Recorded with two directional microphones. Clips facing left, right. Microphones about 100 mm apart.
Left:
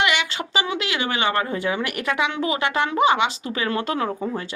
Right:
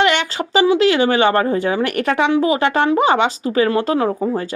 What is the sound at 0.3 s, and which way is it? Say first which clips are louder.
Speech: right 11 dB; 35° right (ahead or behind).